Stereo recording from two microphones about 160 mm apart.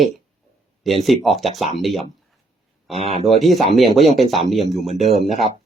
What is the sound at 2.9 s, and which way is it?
Speech, 40° right (ahead or behind).